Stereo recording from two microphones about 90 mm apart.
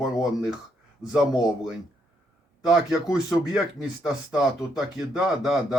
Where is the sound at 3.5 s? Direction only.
5° right (ahead or behind).